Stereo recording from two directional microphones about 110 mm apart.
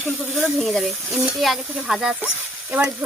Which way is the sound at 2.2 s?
15° right (ahead or behind).